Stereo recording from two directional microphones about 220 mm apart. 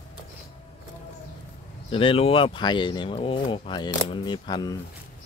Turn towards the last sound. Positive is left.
turn(degrees=20)  # may be behind; listen again after turning